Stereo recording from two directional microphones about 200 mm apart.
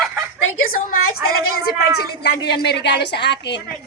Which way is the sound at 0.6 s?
45° left (ahead or behind).